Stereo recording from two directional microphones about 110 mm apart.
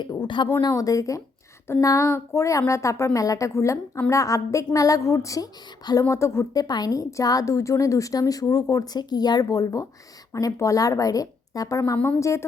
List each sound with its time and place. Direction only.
0.0 s a woman's voice: 40° left (ahead or behind)
0.7 s a woman's voice: 30° left (ahead or behind)